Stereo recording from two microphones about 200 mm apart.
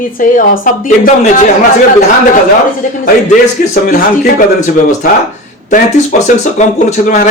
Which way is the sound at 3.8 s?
40° left (ahead or behind).